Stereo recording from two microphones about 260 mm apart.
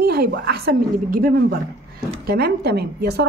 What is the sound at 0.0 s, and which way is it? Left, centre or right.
A woman's voice, right.